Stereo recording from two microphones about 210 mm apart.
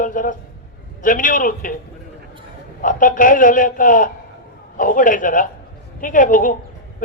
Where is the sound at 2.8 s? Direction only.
40° left (ahead or behind).